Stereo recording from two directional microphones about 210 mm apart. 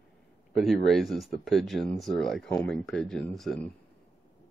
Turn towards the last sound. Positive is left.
turn(degrees=0)  # may be behind; listen again after turning